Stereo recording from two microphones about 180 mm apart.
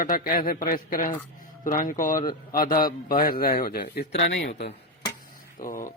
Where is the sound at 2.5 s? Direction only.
50° left (ahead or behind).